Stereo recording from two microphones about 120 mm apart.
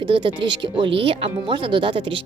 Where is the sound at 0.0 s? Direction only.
45° right (ahead or behind).